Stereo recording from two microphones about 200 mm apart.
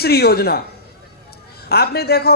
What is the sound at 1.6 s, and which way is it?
Speech, 50° left (ahead or behind).